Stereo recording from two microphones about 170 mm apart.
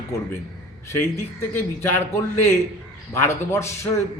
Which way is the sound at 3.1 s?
15° left (ahead or behind).